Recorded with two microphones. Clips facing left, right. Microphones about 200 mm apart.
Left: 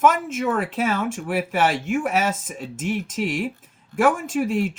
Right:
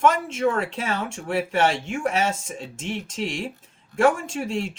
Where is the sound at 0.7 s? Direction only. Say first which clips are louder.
Left 5 dB; 30° right (ahead or behind).